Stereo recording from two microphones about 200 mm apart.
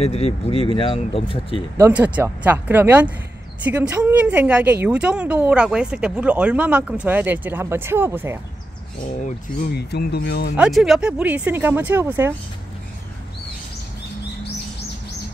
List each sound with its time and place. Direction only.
0.0 s speech: 30° left (ahead or behind)
1.8 s speech: 5° right (ahead or behind)
9.2 s speech: 50° left (ahead or behind)
10.5 s speech: 5° right (ahead or behind)